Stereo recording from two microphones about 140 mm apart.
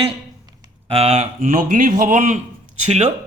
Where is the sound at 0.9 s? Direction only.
45° right (ahead or behind).